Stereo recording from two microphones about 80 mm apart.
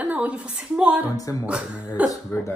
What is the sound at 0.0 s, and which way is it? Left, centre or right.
A woman's voice, centre.